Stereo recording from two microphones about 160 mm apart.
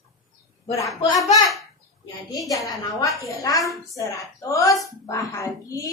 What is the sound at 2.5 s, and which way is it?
A woman's voice, 20° left (ahead or behind).